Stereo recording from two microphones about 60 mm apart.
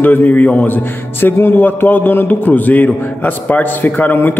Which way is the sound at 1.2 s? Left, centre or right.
Left.